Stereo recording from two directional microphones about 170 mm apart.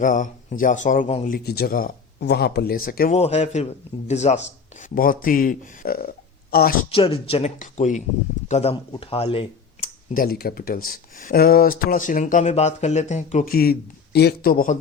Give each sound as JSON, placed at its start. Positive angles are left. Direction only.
{"t": 0.0, "sound": "speech", "side_deg": 50}
{"t": 1.3, "sound": "speech", "side_deg": 65}
{"t": 3.1, "sound": "a woman's voice", "side_deg": 40}
{"t": 6.9, "sound": "speech", "side_deg": 30}
{"t": 9.8, "sound": "speech", "side_deg": 50}
{"t": 13.4, "sound": "speech", "side_deg": 60}